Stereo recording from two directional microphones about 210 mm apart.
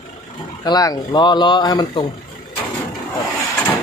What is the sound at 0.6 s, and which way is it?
Speech, 15° left (ahead or behind).